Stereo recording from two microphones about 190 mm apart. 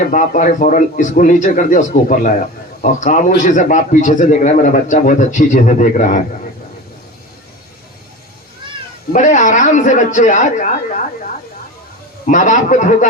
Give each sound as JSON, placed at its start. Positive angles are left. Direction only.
{"t": 0.0, "sound": "a man's voice", "side_deg": 40}
{"t": 9.1, "sound": "a man's voice", "side_deg": 40}
{"t": 12.2, "sound": "a man's voice", "side_deg": 40}